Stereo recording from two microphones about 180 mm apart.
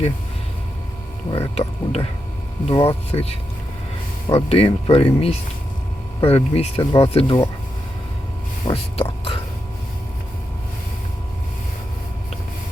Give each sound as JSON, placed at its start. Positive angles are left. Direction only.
{"t": 1.3, "sound": "speech", "side_deg": 35}
{"t": 8.6, "sound": "speech", "side_deg": 30}